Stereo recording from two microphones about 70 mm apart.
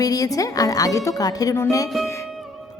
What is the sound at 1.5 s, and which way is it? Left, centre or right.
Speech, left.